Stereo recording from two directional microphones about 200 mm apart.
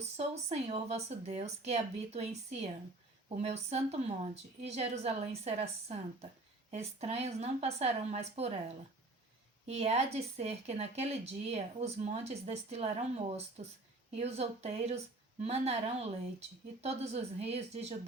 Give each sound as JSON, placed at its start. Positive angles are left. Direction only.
{"t": 0.2, "sound": "speech", "side_deg": -30}
{"t": 9.6, "sound": "speech", "side_deg": -30}